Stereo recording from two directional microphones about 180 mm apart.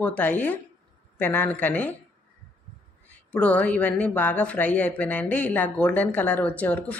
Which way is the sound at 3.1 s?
10° left (ahead or behind).